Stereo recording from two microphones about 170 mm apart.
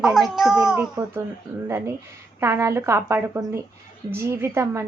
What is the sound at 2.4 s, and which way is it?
A woman's voice, 20° right (ahead or behind).